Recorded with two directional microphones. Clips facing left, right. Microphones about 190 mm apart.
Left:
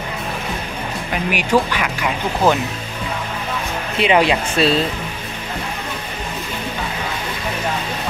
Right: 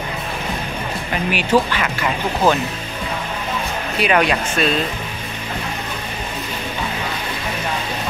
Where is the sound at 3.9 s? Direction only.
25° left (ahead or behind).